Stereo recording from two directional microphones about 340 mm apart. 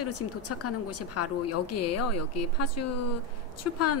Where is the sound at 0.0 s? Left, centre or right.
Left.